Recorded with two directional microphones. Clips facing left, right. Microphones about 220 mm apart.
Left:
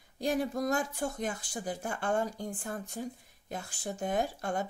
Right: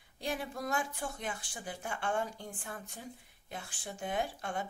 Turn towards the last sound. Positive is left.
turn(degrees=40)  # may be behind; listen again after turning